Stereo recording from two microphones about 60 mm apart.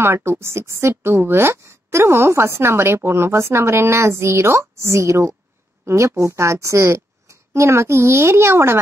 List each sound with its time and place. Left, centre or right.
0.0 s a woman's voice: right